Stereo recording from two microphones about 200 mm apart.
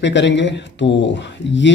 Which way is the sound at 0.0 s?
60° left (ahead or behind).